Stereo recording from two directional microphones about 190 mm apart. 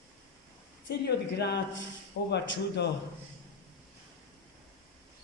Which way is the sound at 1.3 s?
60° left (ahead or behind).